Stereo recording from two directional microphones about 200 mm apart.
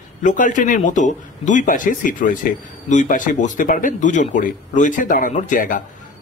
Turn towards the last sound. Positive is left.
turn(degrees=40)  # may be behind; listen again after turning